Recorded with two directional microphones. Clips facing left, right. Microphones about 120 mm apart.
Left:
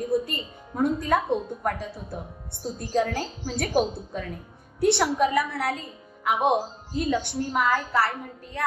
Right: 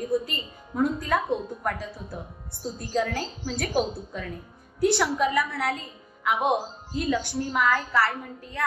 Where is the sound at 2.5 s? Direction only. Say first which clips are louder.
Left 2 dB; 50° left (ahead or behind); by 5.7 s 30° left (ahead or behind).